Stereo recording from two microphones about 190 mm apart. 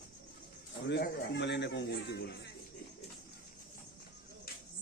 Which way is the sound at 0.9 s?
60° left (ahead or behind).